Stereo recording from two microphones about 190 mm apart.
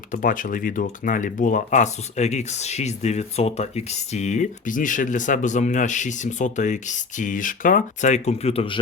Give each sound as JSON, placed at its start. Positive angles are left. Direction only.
{"t": 0.1, "sound": "speech", "side_deg": 45}